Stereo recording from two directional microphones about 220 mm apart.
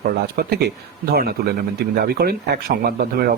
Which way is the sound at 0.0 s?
45° right (ahead or behind).